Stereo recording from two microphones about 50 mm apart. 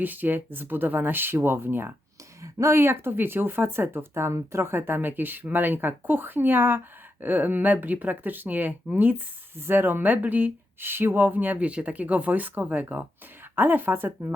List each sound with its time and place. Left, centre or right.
0.0 s speech: right
2.4 s a sound: right
2.8 s speech: right
4.7 s speech: right
10.8 s speech: right
11.6 s speech: right